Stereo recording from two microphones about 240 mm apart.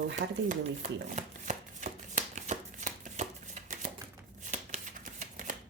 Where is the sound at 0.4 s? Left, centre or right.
Right.